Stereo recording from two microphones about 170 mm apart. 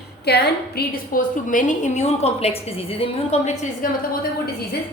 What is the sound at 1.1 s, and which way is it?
A woman's voice, 50° left (ahead or behind).